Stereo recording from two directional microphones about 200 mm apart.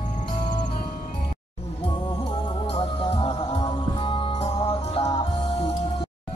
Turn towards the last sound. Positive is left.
turn(degrees=25)  # may be behind; listen again after turning